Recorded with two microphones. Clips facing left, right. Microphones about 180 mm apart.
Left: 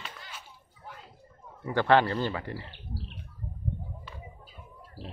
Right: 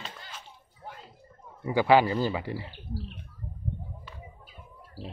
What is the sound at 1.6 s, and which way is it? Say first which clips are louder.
Speech: right 2 dB; 10° right (ahead or behind).